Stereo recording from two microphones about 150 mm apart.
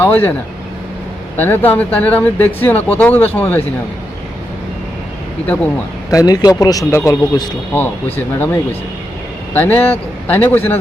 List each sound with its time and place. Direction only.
0.0 s speech: 15° left (ahead or behind)
1.4 s speech: 15° left (ahead or behind)
6.1 s a man's voice: 25° left (ahead or behind)
9.5 s speech: 10° left (ahead or behind)